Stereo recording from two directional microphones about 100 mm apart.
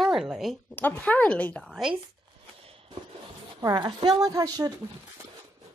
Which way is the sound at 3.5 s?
40° right (ahead or behind).